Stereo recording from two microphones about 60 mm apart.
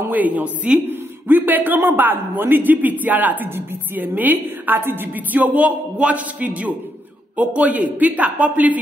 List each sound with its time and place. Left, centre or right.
0.1 s a man's voice: right